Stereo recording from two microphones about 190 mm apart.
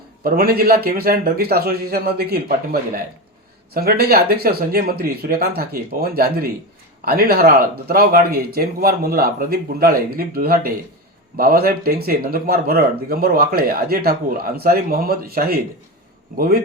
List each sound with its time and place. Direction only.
0.2 s speech: 50° right (ahead or behind)
3.8 s speech: 55° right (ahead or behind)